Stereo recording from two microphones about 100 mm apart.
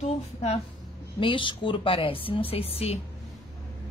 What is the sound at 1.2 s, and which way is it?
A woman's voice, 55° left (ahead or behind).